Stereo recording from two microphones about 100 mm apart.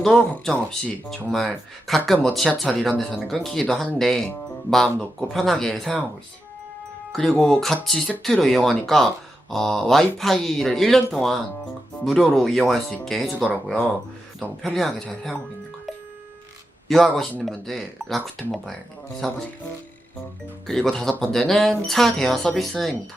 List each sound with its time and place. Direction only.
0.0 s speech: 5° left (ahead or behind)
7.1 s speech: 5° left (ahead or behind)
14.6 s speech: centre (ahead or behind)
16.9 s speech: centre (ahead or behind)
20.7 s speech: 5° left (ahead or behind)